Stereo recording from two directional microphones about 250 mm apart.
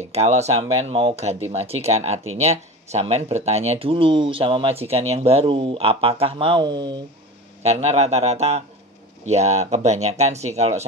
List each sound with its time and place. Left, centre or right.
0.1 s speech: right